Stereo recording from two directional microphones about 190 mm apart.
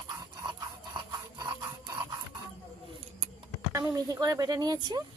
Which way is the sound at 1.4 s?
20° right (ahead or behind).